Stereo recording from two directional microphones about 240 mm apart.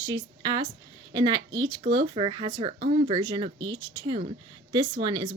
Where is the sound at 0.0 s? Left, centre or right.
Centre.